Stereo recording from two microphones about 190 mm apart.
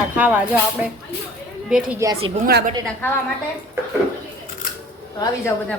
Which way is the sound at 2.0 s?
20° right (ahead or behind).